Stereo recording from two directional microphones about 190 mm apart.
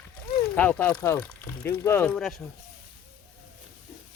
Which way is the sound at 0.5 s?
10° left (ahead or behind).